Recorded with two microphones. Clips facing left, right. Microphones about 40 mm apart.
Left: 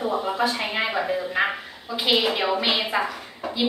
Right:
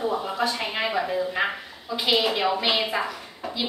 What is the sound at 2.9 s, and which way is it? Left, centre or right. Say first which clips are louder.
Speech: left 3 dB; left.